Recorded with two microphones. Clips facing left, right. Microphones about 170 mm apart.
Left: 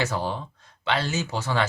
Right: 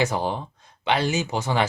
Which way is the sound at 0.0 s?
15° right (ahead or behind).